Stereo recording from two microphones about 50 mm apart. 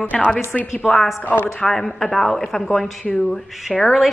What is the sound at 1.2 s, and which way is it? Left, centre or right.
Speech, left.